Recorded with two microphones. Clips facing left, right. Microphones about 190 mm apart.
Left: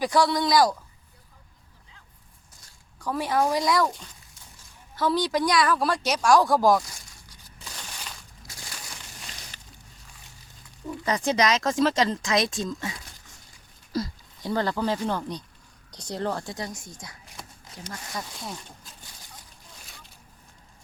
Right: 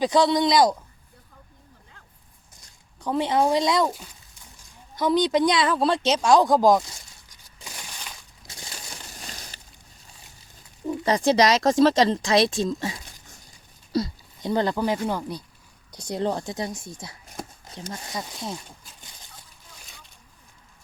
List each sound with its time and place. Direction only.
0.0 s speech: 20° right (ahead or behind)
3.0 s speech: 20° right (ahead or behind)
4.9 s speech: 20° right (ahead or behind)
7.6 s crushing: 10° right (ahead or behind)
8.4 s a sound: 25° right (ahead or behind)
10.8 s speech: 30° right (ahead or behind)
17.4 s shuffling cards: 45° right (ahead or behind)
17.9 s speech: 20° right (ahead or behind)